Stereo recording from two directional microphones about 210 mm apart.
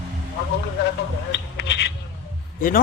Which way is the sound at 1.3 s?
55° left (ahead or behind).